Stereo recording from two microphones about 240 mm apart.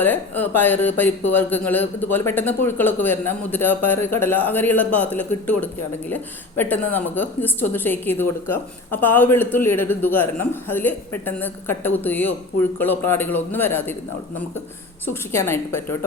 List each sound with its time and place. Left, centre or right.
0.0 s a woman's voice: centre
15.0 s a woman's voice: centre